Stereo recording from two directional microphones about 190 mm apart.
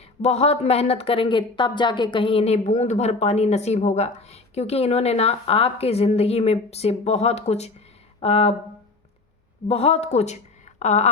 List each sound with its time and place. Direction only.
0.2 s speech: 35° left (ahead or behind)
9.6 s speech: 30° left (ahead or behind)